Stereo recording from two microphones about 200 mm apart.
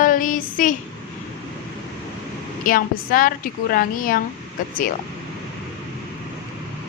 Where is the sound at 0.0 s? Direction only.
40° left (ahead or behind).